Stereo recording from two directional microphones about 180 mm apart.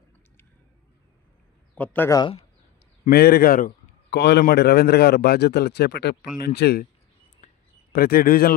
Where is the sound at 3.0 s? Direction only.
60° left (ahead or behind).